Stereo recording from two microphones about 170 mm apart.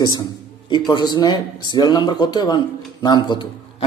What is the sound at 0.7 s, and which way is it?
Speech, 25° left (ahead or behind).